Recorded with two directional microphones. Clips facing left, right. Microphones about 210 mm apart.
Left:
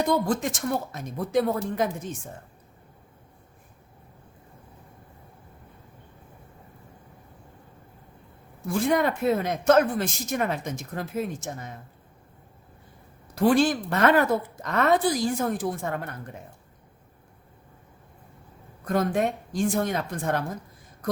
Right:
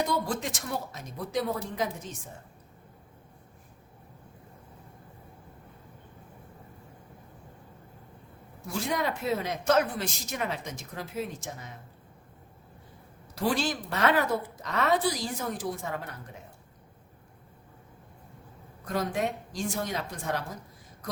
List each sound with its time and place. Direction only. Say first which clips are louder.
0.3 s speech: left 7 dB; 50° left (ahead or behind)
8.6 s speech: left 7 dB; 55° left (ahead or behind)
13.3 s speech: left 8 dB; 50° left (ahead or behind)
18.9 s speech: left 5 dB; 50° left (ahead or behind)